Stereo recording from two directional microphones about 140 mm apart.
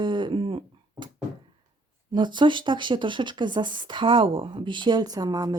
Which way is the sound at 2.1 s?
35° right (ahead or behind).